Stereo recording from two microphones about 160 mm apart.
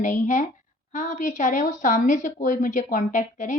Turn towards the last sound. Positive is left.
turn(degrees=50)  # may be behind; listen again after turning